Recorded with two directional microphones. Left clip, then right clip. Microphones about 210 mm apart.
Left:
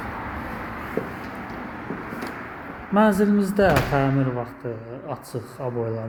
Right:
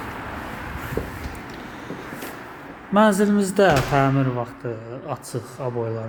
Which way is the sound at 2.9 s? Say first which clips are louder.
Right 2 dB; 15° right (ahead or behind).